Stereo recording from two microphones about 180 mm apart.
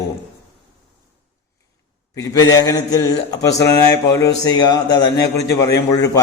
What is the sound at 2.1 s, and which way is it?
Speech, 20° left (ahead or behind).